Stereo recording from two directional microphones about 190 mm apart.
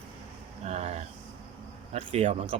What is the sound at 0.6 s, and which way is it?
Speech, 35° right (ahead or behind).